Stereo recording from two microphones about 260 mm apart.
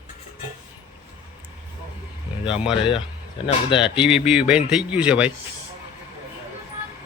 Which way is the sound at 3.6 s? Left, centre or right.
Centre.